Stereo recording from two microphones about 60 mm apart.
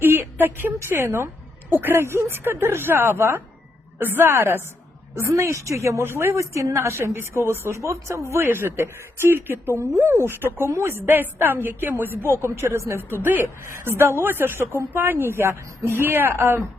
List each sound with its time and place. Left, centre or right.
0.0 s a woman's voice: right
5.1 s a woman's voice: right
6.7 s a woman's voice: right
8.4 s a woman's voice: right